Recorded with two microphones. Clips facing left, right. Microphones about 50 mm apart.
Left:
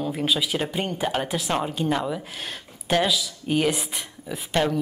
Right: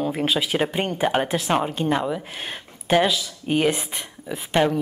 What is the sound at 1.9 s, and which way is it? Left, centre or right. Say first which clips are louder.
Speech: right 2 dB; centre.